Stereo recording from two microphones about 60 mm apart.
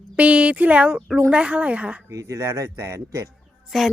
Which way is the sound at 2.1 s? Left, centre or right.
Right.